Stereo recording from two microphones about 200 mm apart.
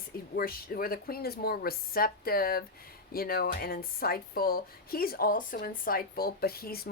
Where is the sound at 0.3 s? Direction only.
45° left (ahead or behind).